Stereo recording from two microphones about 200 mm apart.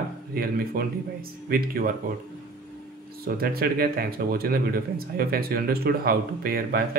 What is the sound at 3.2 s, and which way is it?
Speech, 50° right (ahead or behind).